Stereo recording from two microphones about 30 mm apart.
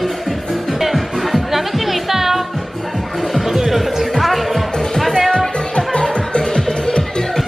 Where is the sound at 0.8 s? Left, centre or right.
Centre.